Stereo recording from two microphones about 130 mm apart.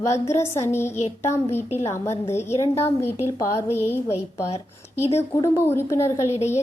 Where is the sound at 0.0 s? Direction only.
20° left (ahead or behind).